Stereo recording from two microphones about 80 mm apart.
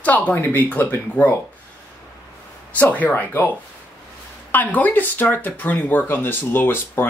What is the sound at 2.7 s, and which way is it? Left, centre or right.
Speech, centre.